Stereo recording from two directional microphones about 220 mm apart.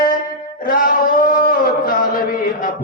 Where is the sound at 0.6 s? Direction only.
40° left (ahead or behind).